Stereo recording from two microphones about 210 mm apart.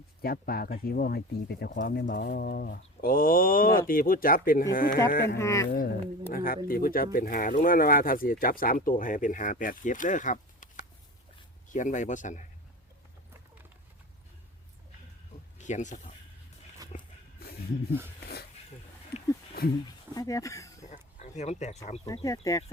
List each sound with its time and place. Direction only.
0.2 s speech: 45° left (ahead or behind)
5.4 s speech: 15° left (ahead or behind)
5.7 s speech: 45° left (ahead or behind)
11.7 s speech: 35° left (ahead or behind)
15.5 s speech: 35° left (ahead or behind)
16.8 s a sound: 15° right (ahead or behind)
19.1 s a sound: 30° left (ahead or behind)
20.1 s speech: 15° left (ahead or behind)
20.9 s a sound: 35° left (ahead or behind)
22.0 s speech: 15° left (ahead or behind)